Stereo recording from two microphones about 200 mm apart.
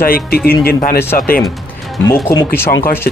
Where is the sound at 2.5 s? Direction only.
10° left (ahead or behind).